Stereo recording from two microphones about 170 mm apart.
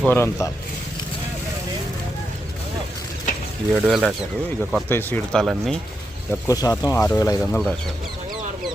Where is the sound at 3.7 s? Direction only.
5° right (ahead or behind).